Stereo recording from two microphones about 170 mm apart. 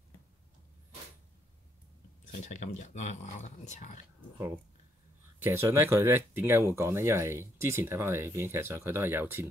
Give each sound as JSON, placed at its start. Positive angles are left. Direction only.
{"t": 2.4, "sound": "speech", "side_deg": 45}
{"t": 5.4, "sound": "speech", "side_deg": -15}